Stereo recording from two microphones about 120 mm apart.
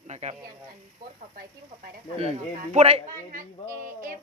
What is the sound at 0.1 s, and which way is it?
Speech, 70° right (ahead or behind).